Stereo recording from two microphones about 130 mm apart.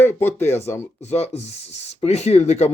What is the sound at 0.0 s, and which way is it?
Speech, 15° left (ahead or behind).